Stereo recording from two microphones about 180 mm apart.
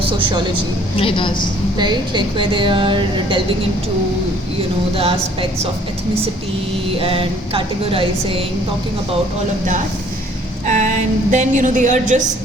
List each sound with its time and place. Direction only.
0.0 s a woman's voice: 25° right (ahead or behind)
0.9 s a woman's voice: 30° left (ahead or behind)
1.8 s a woman's voice: 25° right (ahead or behind)
4.9 s a woman's voice: 30° right (ahead or behind)
7.0 s a woman's voice: 30° right (ahead or behind)
10.7 s a woman's voice: 40° right (ahead or behind)